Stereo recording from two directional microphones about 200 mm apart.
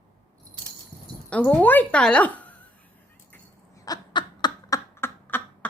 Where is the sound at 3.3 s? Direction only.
15° left (ahead or behind).